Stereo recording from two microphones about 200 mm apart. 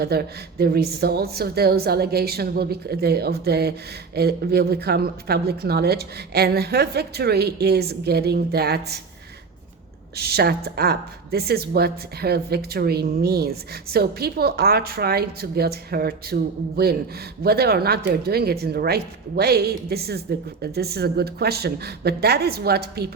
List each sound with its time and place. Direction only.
0.0 s a woman's voice: 50° right (ahead or behind)
10.2 s a woman's voice: 50° right (ahead or behind)